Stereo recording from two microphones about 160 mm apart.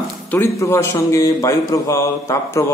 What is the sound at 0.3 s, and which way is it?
A man's voice, 15° left (ahead or behind).